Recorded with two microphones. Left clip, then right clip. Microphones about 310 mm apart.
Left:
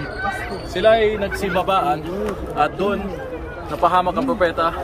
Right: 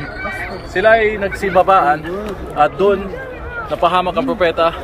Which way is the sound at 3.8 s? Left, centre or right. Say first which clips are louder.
Right 2 dB; right.